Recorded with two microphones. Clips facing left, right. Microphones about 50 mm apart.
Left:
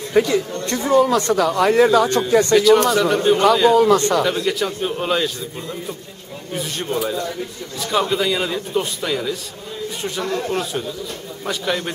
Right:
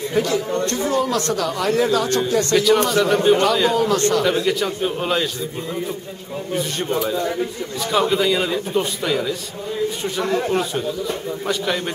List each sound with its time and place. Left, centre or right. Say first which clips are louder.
0.1 s speech: left 4 dB; left
2.5 s a man's voice: left 2 dB; centre
6.5 s a man's voice: right 1 dB; centre
9.8 s a sound: right 2 dB; centre
10.2 s a man's voice: right 3 dB; centre